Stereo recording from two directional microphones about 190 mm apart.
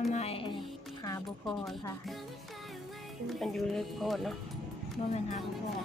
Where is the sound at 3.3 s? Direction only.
Centre (ahead or behind).